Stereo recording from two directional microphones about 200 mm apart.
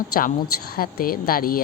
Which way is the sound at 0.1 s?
45° left (ahead or behind).